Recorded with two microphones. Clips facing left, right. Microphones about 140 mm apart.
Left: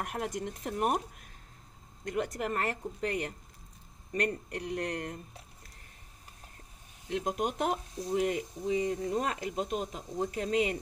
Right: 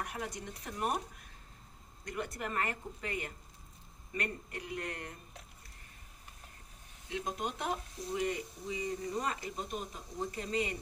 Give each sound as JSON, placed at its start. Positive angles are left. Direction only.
{"t": 0.0, "sound": "speech", "side_deg": 60}
{"t": 2.2, "sound": "speech", "side_deg": 45}
{"t": 4.1, "sound": "speech", "side_deg": 40}
{"t": 7.1, "sound": "speech", "side_deg": 55}